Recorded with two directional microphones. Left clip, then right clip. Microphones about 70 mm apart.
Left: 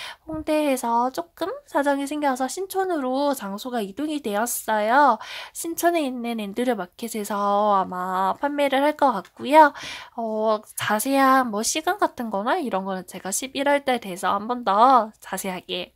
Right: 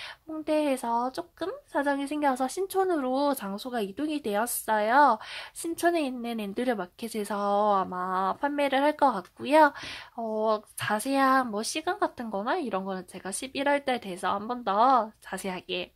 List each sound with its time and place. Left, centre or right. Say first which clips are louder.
0.0 s speech: left 5 dB; left
1.4 s speech: left 6 dB; left
2.1 s speech: left 3 dB; centre; by 15.4 s left
15.4 s speech: left 2 dB; left